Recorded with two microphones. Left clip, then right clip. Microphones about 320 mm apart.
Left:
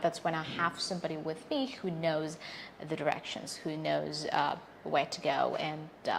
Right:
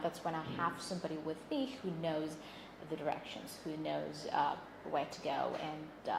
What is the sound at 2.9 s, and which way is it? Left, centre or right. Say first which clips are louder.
A woman's voice: left 6 dB; left.